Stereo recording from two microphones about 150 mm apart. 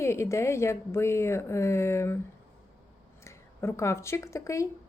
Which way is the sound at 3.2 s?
20° left (ahead or behind).